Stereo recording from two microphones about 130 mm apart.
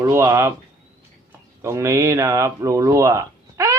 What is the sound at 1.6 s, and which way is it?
Speech, 20° right (ahead or behind).